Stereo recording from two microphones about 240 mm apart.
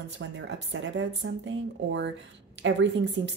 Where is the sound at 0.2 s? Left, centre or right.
Right.